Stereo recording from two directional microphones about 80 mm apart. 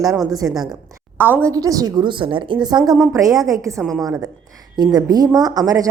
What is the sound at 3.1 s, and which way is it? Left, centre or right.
A woman's voice, right.